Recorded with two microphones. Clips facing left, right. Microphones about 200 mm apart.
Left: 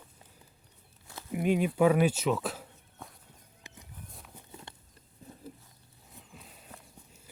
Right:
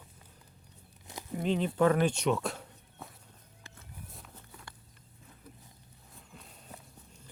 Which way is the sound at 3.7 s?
15° left (ahead or behind).